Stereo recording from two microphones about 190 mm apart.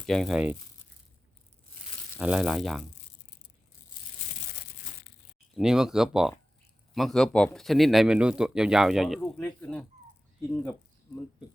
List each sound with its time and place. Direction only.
0.0 s speech: centre (ahead or behind)
2.1 s speech: 5° right (ahead or behind)
5.5 s speech: 5° right (ahead or behind)
9.4 s speech: 10° left (ahead or behind)